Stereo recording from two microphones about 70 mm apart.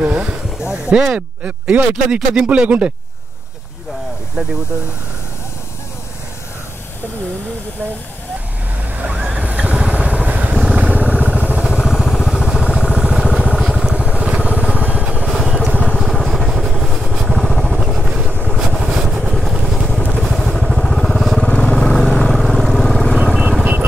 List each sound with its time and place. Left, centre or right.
0.0 s a sound: centre
0.7 s speech: centre
8.9 s vehicle: centre
11.6 s vehicle: centre; by 15.2 s right
15.2 s vehicle: centre
21.5 s vehicle: centre
21.7 s vehicle: centre